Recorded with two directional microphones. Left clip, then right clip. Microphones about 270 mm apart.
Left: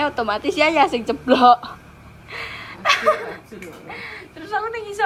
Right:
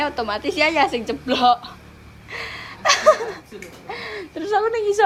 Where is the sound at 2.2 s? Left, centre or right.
Centre.